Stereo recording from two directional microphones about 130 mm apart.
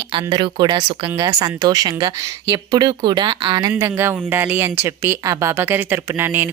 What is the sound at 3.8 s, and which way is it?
Speech, 15° right (ahead or behind).